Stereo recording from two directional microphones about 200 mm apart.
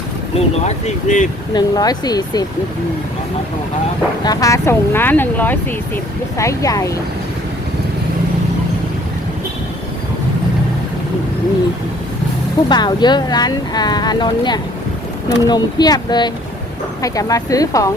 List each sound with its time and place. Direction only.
0.3 s speech: 35° left (ahead or behind)
1.5 s speech: 20° left (ahead or behind)
4.2 s speech: 20° left (ahead or behind)
12.6 s speech: 20° left (ahead or behind)